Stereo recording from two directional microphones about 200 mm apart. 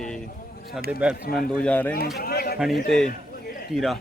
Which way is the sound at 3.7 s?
Centre (ahead or behind).